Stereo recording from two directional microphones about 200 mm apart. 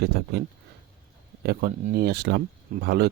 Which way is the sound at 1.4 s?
50° right (ahead or behind).